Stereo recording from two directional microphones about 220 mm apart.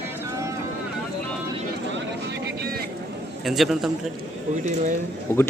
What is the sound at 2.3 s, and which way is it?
Vehicle, 45° right (ahead or behind).